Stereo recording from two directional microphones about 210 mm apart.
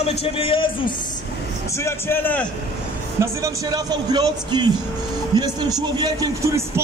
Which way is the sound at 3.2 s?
15° right (ahead or behind).